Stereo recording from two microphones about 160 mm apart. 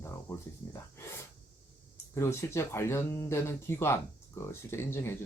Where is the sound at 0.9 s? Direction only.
15° left (ahead or behind).